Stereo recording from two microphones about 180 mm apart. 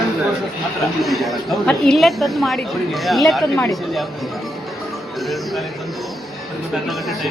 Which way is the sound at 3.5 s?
15° left (ahead or behind).